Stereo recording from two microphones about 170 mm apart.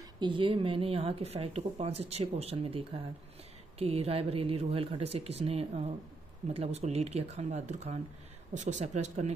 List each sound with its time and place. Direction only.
0.2 s speech: 30° right (ahead or behind)